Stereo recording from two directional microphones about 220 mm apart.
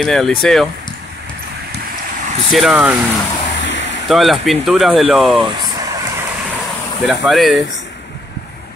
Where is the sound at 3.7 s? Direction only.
55° left (ahead or behind).